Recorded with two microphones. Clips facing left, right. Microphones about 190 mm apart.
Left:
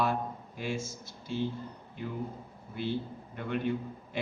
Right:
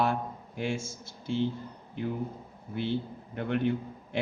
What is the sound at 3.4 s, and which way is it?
Speech, 60° right (ahead or behind).